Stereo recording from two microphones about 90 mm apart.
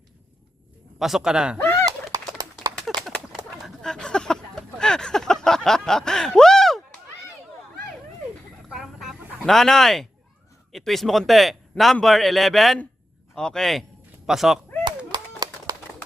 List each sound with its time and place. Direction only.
0.9 s speech: 5° right (ahead or behind)
1.5 s fowl: 25° left (ahead or behind)
2.9 s horse: centre (ahead or behind)
3.8 s a sound: 10° left (ahead or behind)
8.7 s a sound: 5° right (ahead or behind)
9.4 s speech: 5° left (ahead or behind)
14.8 s clapping: 55° right (ahead or behind)